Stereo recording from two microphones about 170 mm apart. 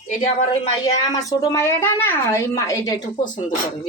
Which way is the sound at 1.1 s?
20° left (ahead or behind).